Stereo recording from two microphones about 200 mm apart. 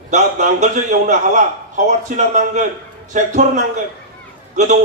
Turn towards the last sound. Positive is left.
turn(degrees=-40)  # may be behind; listen again after turning